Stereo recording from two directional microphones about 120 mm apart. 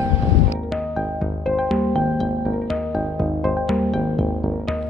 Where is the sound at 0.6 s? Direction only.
Centre (ahead or behind).